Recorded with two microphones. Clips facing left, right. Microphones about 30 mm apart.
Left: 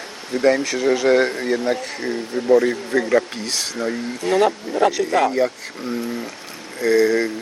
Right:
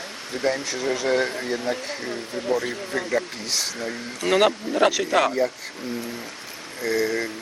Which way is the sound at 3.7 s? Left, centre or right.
Centre.